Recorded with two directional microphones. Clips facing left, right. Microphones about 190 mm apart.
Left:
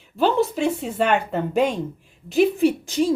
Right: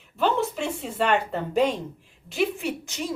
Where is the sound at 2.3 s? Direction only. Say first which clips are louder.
Left 9 dB; 35° left (ahead or behind).